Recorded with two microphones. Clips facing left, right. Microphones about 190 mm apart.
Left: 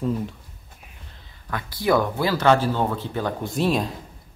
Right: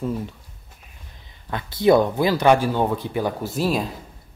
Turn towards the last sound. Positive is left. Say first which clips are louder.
# even
turn(degrees=0)  # may be behind; listen again after turning